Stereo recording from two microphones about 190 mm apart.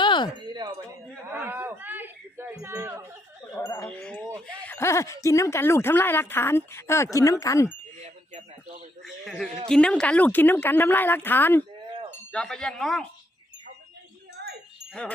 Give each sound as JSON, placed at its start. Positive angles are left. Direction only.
{"t": 0.0, "sound": "a sound", "side_deg": 25}
{"t": 0.5, "sound": "chink", "side_deg": -20}
{"t": 1.3, "sound": "wind chime", "side_deg": -10}
{"t": 3.6, "sound": "wind chime", "side_deg": 15}
{"t": 4.6, "sound": "speech", "side_deg": 10}
{"t": 8.0, "sound": "a sound", "side_deg": -35}
{"t": 9.0, "sound": "speech", "side_deg": 0}